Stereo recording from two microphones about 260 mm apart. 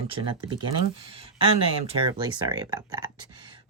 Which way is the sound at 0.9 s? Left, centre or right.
Right.